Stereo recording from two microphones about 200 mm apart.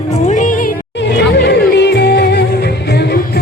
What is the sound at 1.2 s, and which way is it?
Music, 55° left (ahead or behind).